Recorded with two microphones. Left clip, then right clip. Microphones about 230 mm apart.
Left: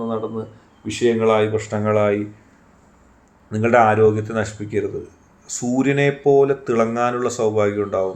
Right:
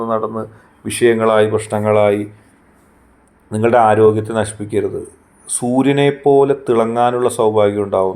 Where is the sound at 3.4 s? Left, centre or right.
Centre.